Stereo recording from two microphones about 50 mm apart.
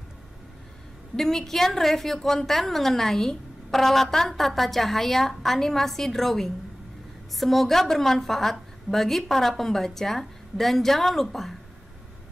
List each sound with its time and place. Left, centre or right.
1.1 s a woman's voice: centre